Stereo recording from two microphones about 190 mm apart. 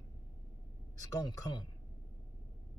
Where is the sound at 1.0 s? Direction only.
20° left (ahead or behind).